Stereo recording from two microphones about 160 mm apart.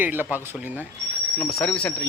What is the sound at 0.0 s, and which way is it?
Speech, 10° right (ahead or behind).